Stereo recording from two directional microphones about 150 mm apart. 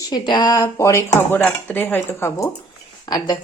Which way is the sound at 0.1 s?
30° left (ahead or behind).